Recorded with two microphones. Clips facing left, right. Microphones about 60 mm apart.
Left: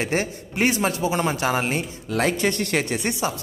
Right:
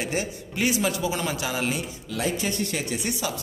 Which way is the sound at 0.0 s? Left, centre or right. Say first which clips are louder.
Left 4 dB; left.